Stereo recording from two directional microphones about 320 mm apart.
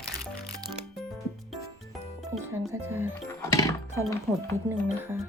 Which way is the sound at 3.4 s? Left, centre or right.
Centre.